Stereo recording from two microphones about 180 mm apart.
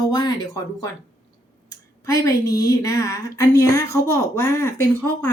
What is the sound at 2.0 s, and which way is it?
A woman's voice, 15° left (ahead or behind).